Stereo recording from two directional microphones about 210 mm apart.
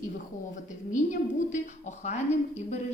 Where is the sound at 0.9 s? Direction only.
35° left (ahead or behind).